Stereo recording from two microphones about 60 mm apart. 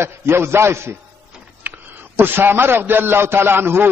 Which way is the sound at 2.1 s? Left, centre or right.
Right.